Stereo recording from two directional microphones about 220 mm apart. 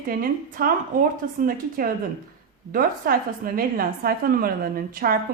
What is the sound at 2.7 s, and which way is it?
Speech, 40° right (ahead or behind).